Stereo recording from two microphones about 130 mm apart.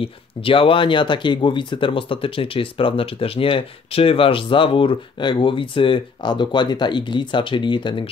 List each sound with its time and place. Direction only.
0.0 s speech: 45° left (ahead or behind)